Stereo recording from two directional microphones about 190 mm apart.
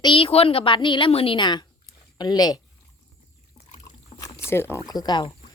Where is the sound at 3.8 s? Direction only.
15° left (ahead or behind).